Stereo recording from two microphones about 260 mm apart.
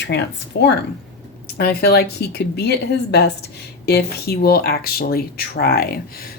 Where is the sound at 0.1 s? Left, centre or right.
Left.